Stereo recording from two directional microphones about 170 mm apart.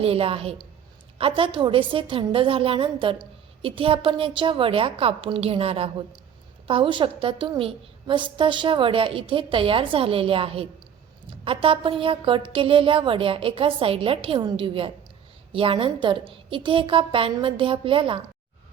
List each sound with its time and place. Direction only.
0.0 s a woman's voice: 35° right (ahead or behind)